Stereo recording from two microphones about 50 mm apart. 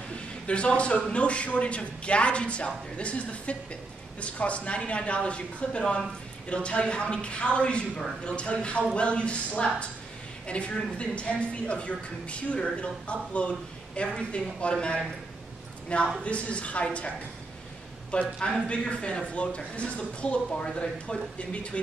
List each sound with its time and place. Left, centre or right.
0.5 s a woman's voice: left
18.4 s a woman's voice: left